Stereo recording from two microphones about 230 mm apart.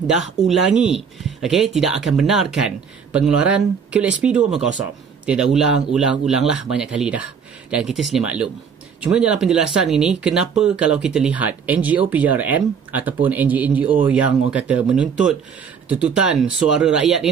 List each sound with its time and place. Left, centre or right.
0.0 s speech: centre